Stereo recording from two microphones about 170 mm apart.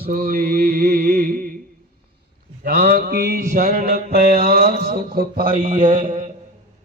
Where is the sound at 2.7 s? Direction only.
65° right (ahead or behind).